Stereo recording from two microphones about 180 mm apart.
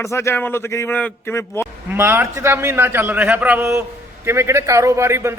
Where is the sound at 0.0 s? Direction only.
15° left (ahead or behind).